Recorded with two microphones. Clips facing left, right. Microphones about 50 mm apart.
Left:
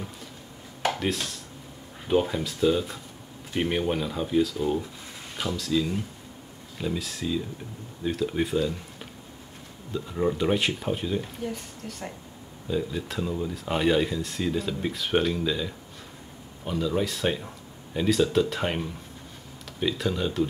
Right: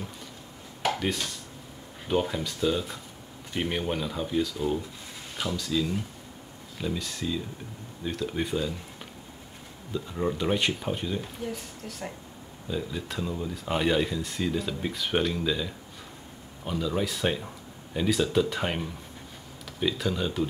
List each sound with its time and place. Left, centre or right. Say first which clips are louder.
0.8 s dishes: left 1 dB; centre
2.0 s speech: left 3 dB; centre
9.9 s speech: left 3 dB; centre